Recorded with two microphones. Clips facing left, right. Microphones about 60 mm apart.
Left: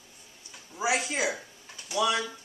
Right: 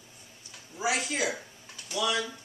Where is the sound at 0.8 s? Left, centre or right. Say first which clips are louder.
Left 1 dB; left.